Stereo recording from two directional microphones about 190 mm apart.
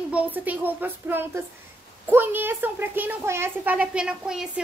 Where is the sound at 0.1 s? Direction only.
10° right (ahead or behind).